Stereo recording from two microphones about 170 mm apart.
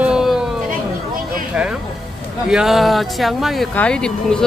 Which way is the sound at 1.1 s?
55° right (ahead or behind).